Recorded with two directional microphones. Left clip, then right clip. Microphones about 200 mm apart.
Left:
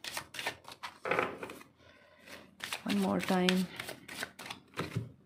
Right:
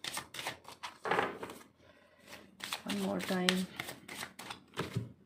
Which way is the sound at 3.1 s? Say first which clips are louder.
Left 4 dB; 50° left (ahead or behind).